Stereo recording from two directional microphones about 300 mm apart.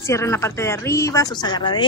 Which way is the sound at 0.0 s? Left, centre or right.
Centre.